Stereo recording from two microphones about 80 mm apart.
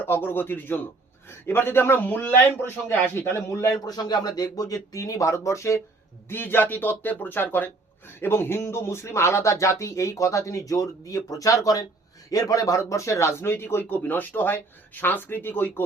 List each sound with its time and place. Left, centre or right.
0.0 s speech: left
3.8 s speech: left
6.2 s a man's voice: left